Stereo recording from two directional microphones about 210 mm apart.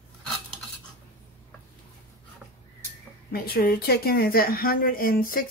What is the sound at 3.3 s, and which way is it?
A woman's voice, 45° left (ahead or behind).